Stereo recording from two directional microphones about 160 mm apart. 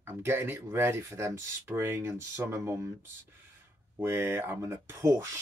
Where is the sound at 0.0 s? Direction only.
15° right (ahead or behind).